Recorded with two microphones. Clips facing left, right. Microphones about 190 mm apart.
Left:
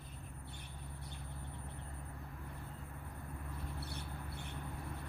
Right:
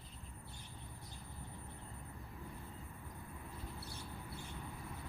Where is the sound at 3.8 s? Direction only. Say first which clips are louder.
Left 3 dB; 65° left (ahead or behind).